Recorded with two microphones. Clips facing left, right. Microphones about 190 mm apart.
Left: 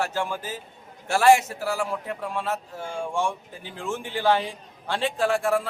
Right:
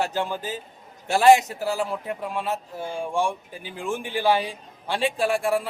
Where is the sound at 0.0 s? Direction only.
20° right (ahead or behind).